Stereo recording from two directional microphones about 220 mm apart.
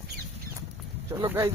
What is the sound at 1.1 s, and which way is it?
Speech, 15° right (ahead or behind).